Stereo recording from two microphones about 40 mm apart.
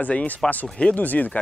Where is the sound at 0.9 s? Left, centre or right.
Left.